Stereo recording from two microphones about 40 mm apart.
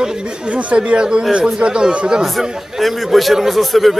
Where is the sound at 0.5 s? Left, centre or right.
Right.